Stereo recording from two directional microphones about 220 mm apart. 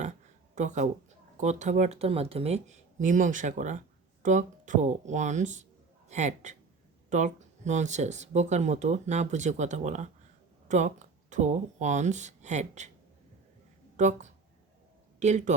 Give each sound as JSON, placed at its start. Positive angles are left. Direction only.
{"t": 0.5, "sound": "speech", "side_deg": -35}
{"t": 13.9, "sound": "speech", "side_deg": -35}